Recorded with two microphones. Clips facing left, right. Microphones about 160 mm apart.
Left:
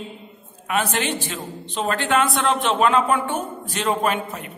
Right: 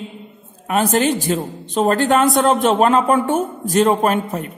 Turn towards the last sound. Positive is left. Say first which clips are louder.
# right 5 dB
turn(degrees=-40)  # may be behind; listen again after turning